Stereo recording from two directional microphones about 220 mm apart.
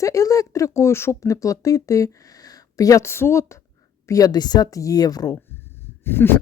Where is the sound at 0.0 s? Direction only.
15° left (ahead or behind).